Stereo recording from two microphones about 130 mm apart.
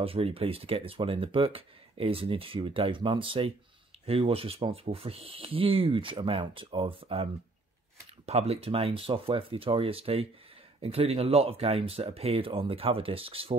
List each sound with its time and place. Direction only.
0.0 s speech: 45° right (ahead or behind)
8.3 s speech: 55° right (ahead or behind)